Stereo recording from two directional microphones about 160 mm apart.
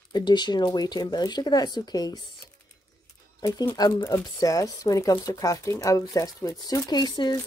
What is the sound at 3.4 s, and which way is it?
Speech, 25° left (ahead or behind).